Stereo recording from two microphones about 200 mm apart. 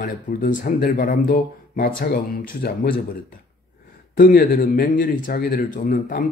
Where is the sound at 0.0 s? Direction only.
40° left (ahead or behind).